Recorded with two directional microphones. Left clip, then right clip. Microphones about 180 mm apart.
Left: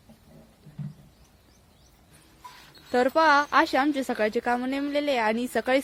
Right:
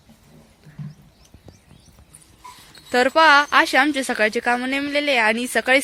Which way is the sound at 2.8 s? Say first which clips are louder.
Right 6 dB; 5° left (ahead or behind).